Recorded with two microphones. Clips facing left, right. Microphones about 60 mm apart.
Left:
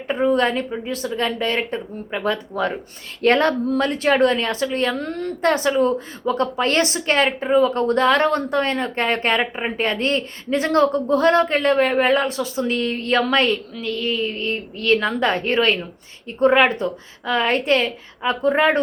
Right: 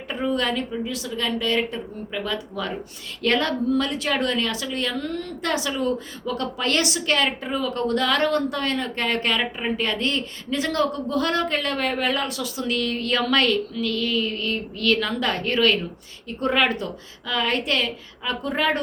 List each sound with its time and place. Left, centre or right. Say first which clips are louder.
0.1 s a woman's voice: left 6 dB; left